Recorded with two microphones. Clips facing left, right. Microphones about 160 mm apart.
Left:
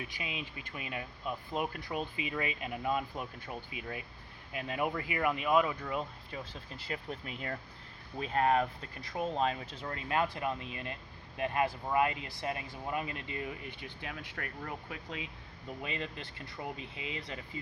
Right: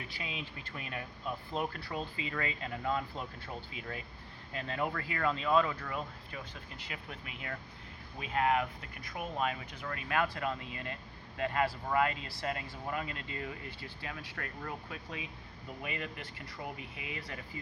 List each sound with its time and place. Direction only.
0.1 s speech: 15° left (ahead or behind)